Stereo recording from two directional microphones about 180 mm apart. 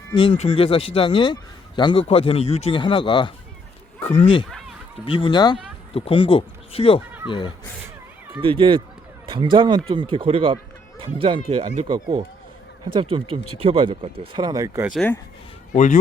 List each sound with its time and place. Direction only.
0.1 s speech: 30° left (ahead or behind)
8.4 s speech: 30° right (ahead or behind)
15.7 s speech: 45° left (ahead or behind)